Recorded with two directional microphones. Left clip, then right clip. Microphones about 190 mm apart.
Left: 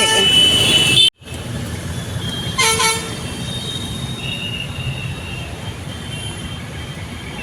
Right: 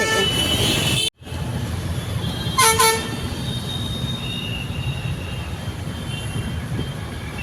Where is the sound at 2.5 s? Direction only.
45° right (ahead or behind).